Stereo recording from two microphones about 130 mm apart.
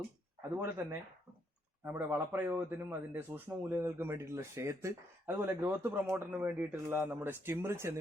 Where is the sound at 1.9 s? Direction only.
15° right (ahead or behind).